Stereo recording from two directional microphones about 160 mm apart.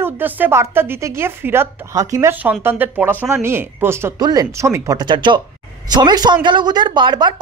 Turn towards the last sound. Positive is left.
turn(degrees=-25)  # may be behind; listen again after turning